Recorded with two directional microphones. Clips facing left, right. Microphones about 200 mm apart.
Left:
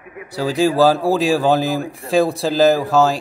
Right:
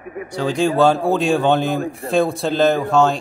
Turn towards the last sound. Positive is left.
turn(degrees=0)  # may be behind; listen again after turning